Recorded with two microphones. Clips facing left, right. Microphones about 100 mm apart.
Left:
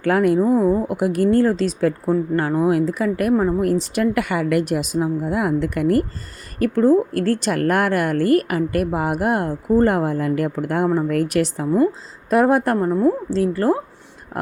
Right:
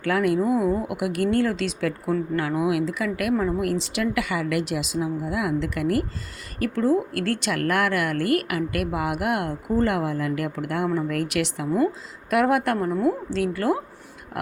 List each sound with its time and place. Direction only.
0.0 s a woman's voice: 45° left (ahead or behind)